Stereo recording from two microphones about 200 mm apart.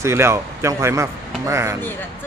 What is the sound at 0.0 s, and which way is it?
A man's voice, 15° right (ahead or behind).